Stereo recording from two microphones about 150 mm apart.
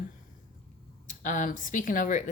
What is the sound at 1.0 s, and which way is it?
A woman's voice, 55° left (ahead or behind).